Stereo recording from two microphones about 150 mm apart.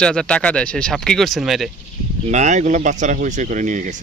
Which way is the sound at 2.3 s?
50° right (ahead or behind).